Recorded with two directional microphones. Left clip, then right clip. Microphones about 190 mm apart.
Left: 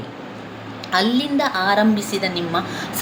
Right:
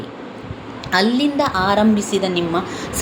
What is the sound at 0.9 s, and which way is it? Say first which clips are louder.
A woman's voice: right 2 dB; 15° right (ahead or behind).